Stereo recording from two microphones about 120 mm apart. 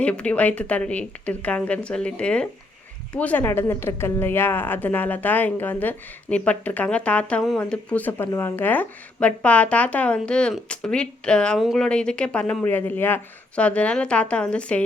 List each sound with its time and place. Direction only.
0.0 s a woman's voice: 10° left (ahead or behind)